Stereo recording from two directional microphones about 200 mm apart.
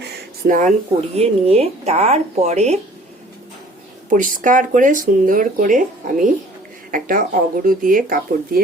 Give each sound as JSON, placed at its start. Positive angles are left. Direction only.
{"t": 0.4, "sound": "speech", "side_deg": -45}
{"t": 1.1, "sound": "speech", "side_deg": -30}
{"t": 4.1, "sound": "speech", "side_deg": -40}